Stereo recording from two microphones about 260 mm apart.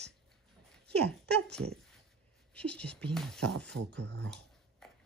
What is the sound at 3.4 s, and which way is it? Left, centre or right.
Speech, right.